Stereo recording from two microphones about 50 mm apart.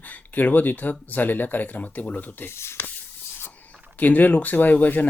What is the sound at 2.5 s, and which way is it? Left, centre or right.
Speech, left.